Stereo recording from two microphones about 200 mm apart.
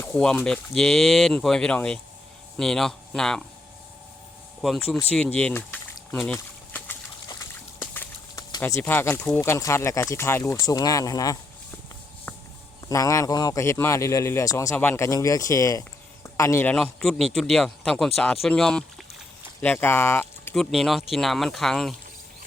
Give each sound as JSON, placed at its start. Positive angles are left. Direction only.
{"t": 0.0, "sound": "speech", "side_deg": 5}
{"t": 5.1, "sound": "a sound", "side_deg": 5}
{"t": 12.9, "sound": "a man's voice", "side_deg": 15}
{"t": 16.7, "sound": "speech", "side_deg": 5}